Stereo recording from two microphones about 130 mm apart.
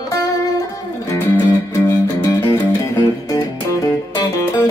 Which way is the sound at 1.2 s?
15° left (ahead or behind).